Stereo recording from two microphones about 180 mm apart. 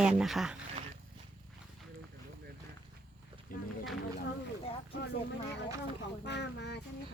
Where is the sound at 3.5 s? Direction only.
50° left (ahead or behind).